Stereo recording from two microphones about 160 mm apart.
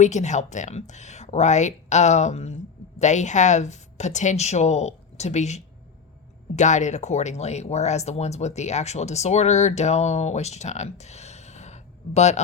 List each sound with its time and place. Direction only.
0.0 s speech: 45° left (ahead or behind)